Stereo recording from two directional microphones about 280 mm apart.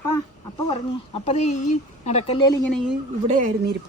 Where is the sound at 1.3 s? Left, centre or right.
Left.